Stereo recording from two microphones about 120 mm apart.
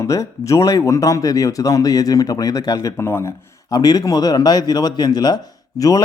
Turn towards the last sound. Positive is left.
turn(degrees=30)  # may be behind; listen again after turning